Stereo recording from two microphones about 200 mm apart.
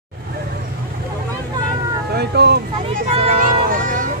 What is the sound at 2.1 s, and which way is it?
Speech, 55° right (ahead or behind).